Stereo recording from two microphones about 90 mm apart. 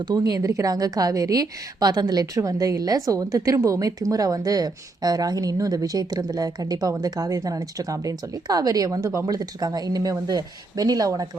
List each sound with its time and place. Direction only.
0.0 s a woman's voice: 45° right (ahead or behind)